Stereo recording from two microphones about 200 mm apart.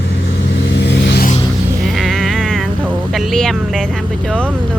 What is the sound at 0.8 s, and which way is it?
Vehicle, 60° left (ahead or behind).